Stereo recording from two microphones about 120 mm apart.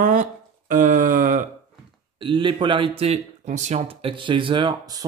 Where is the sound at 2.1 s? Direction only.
45° right (ahead or behind).